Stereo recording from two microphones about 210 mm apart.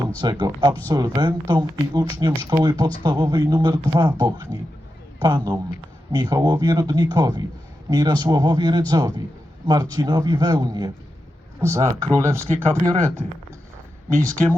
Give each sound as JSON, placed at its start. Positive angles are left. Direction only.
{"t": 0.2, "sound": "speech", "side_deg": -20}